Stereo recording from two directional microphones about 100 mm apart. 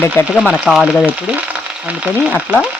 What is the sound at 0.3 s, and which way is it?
Frying, 10° right (ahead or behind).